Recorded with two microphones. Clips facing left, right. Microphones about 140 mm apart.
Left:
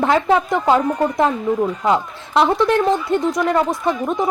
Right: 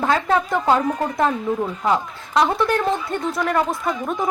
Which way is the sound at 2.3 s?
25° left (ahead or behind).